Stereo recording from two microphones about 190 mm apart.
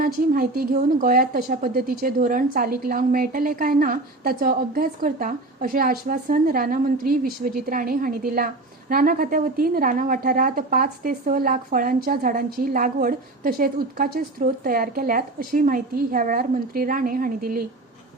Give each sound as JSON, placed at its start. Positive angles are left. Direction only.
{"t": 0.0, "sound": "a woman's voice", "side_deg": -50}